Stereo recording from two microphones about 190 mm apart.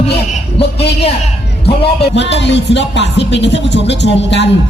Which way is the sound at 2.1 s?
65° left (ahead or behind).